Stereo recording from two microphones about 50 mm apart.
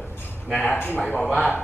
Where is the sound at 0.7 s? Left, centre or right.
Left.